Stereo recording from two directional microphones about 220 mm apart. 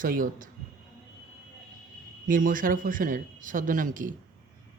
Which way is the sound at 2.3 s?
40° right (ahead or behind).